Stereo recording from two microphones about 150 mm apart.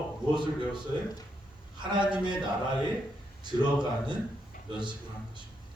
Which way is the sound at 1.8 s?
30° right (ahead or behind).